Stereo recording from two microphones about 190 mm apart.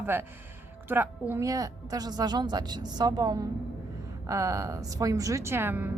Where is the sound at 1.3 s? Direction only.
15° right (ahead or behind).